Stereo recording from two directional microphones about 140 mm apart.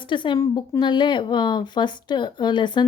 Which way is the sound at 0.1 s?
35° left (ahead or behind).